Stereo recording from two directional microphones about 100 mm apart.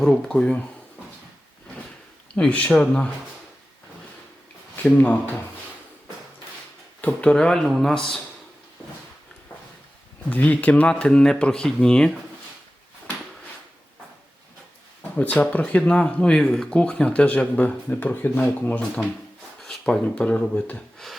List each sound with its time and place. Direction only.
0.0 s speech: 5° left (ahead or behind)
2.3 s speech: 10° left (ahead or behind)
4.8 s speech: 15° left (ahead or behind)
7.0 s speech: 10° left (ahead or behind)
10.2 s speech: 15° left (ahead or behind)
15.1 s speech: 15° left (ahead or behind)